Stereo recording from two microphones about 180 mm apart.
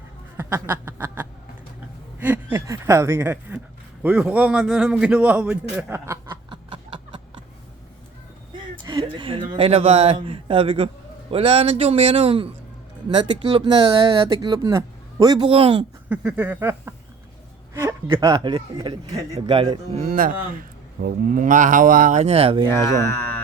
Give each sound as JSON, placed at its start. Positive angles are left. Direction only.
{"t": 0.3, "sound": "snicker", "side_deg": -15}
{"t": 2.1, "sound": "a man's voice", "side_deg": -10}
{"t": 6.2, "sound": "a sound", "side_deg": -25}
{"t": 8.8, "sound": "a sound", "side_deg": -25}
{"t": 9.6, "sound": "a man's voice", "side_deg": -35}
{"t": 15.4, "sound": "a man's voice", "side_deg": -35}
{"t": 16.0, "sound": "a man's voice", "side_deg": -10}
{"t": 18.1, "sound": "speech", "side_deg": -20}
{"t": 20.1, "sound": "speech", "side_deg": -55}
{"t": 22.7, "sound": "speech", "side_deg": 15}